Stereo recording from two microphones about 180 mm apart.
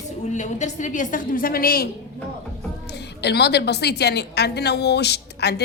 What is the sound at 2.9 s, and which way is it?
A woman's voice, 70° left (ahead or behind).